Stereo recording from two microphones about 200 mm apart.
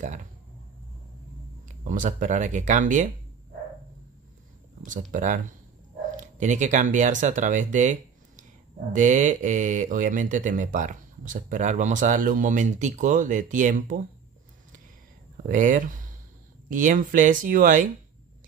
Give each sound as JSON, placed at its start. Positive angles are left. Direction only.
{"t": 0.0, "sound": "speech", "side_deg": -40}
{"t": 1.7, "sound": "speech", "side_deg": -40}
{"t": 5.1, "sound": "speech", "side_deg": -40}
{"t": 15.4, "sound": "speech", "side_deg": -40}